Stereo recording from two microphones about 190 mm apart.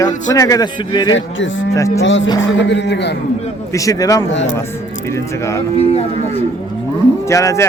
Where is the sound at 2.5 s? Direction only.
70° left (ahead or behind).